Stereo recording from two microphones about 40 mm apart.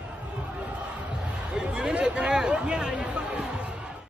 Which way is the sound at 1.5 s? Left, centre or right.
Centre.